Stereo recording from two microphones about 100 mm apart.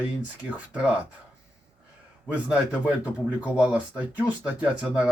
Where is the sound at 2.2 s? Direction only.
15° right (ahead or behind).